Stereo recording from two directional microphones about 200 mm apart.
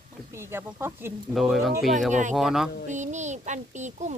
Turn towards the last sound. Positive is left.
turn(degrees=-35)  # may be behind; listen again after turning